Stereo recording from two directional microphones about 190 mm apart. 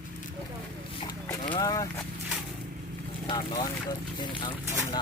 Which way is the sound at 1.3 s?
20° left (ahead or behind).